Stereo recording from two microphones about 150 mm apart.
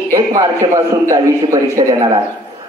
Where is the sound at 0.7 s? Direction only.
20° right (ahead or behind).